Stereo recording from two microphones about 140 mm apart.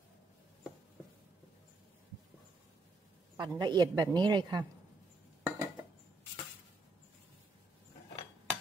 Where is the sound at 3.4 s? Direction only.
30° right (ahead or behind).